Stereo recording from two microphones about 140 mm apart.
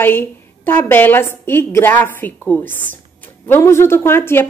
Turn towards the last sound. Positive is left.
turn(degrees=15)  # may be behind; listen again after turning